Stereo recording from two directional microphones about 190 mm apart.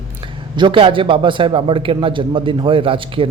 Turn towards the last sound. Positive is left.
turn(degrees=-30)  # may be behind; listen again after turning